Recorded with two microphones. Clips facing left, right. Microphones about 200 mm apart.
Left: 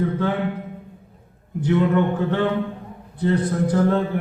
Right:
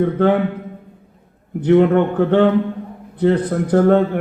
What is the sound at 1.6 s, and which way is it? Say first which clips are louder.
A man's voice: right 6 dB; 60° right (ahead or behind).